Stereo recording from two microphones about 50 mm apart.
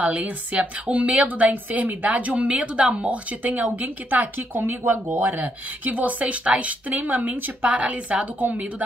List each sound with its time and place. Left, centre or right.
0.0 s a woman's voice: right
7.7 s a woman's voice: right